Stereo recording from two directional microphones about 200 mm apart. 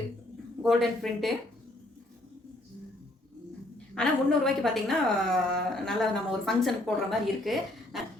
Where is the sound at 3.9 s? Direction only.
5° left (ahead or behind).